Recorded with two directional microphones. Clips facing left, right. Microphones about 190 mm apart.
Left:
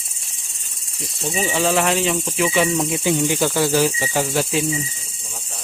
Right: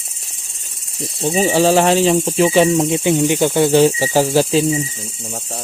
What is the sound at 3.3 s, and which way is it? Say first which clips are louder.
Cricket: right 5 dB; 20° right (ahead or behind).